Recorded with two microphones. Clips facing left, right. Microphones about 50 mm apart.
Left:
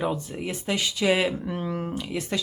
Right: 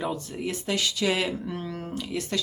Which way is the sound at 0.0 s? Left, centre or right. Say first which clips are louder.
Left 2 dB; centre.